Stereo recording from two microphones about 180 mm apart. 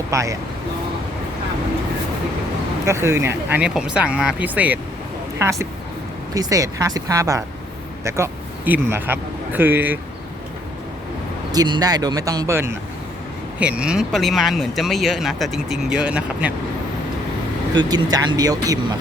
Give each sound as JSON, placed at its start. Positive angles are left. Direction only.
{"t": 0.1, "sound": "speech", "side_deg": -15}
{"t": 2.8, "sound": "a man's voice", "side_deg": -15}
{"t": 11.5, "sound": "speech", "side_deg": -20}
{"t": 17.7, "sound": "speech", "side_deg": -20}